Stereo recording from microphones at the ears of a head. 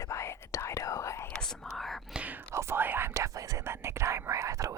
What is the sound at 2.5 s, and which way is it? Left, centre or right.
Whispering, right.